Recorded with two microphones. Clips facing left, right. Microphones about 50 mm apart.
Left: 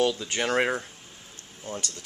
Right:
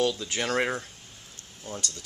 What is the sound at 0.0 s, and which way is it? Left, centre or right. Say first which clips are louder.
Speech: left 2 dB; centre.